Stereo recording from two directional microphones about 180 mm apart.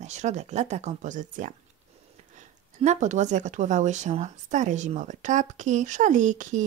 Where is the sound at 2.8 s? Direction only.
40° right (ahead or behind).